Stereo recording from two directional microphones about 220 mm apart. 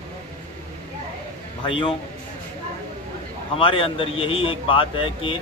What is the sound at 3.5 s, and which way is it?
A man's voice, 25° left (ahead or behind).